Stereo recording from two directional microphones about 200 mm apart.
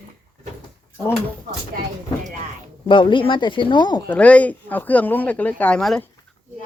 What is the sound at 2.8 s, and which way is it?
Speech, 25° left (ahead or behind).